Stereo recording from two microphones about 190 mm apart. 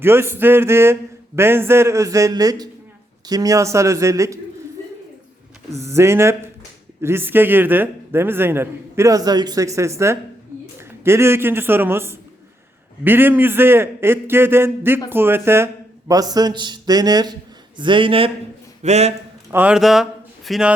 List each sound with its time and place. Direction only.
0.0 s a man's voice: 10° right (ahead or behind)
5.8 s a man's voice: 15° right (ahead or behind); by 19.1 s 35° right (ahead or behind)
19.5 s speech: 10° right (ahead or behind)